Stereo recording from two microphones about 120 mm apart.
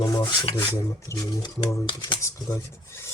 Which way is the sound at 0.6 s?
25° left (ahead or behind).